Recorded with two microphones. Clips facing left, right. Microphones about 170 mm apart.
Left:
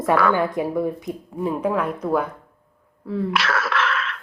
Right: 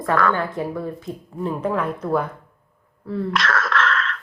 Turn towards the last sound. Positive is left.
turn(degrees=10)  # may be behind; listen again after turning